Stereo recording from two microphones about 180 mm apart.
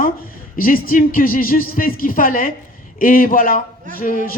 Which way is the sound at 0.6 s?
50° left (ahead or behind).